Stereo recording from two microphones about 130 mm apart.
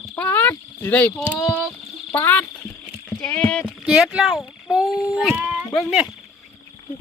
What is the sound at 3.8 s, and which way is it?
Speech, 5° right (ahead or behind).